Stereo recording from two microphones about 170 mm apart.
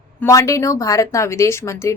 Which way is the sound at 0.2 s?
20° left (ahead or behind).